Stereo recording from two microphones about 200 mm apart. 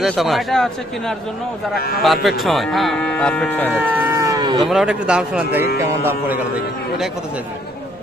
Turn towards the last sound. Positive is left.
turn(degrees=0)  # may be behind; listen again after turning